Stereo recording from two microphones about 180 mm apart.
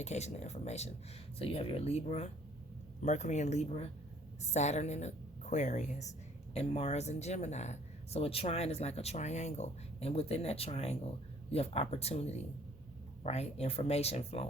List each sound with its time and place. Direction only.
0.0 s a woman's voice: 40° left (ahead or behind)